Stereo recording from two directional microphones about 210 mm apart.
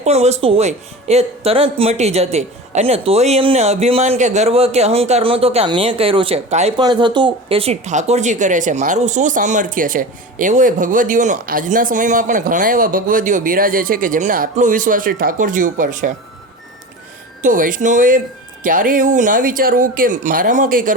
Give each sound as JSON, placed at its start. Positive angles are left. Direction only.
{"t": 0.0, "sound": "speech", "side_deg": -30}
{"t": 6.7, "sound": "speech", "side_deg": -20}
{"t": 17.4, "sound": "speech", "side_deg": -40}